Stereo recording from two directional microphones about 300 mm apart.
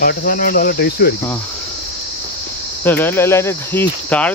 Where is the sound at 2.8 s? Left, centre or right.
Centre.